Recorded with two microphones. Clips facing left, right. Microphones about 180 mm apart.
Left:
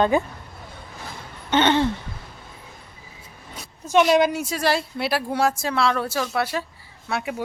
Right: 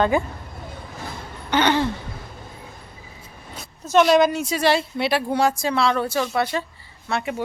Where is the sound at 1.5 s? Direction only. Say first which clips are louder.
Left 1 dB; 25° left (ahead or behind).